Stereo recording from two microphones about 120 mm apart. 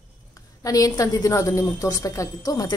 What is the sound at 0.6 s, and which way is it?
Speech, 30° left (ahead or behind).